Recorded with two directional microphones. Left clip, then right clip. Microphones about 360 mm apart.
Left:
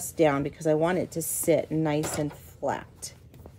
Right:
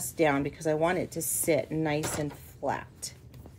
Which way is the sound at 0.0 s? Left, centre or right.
Centre.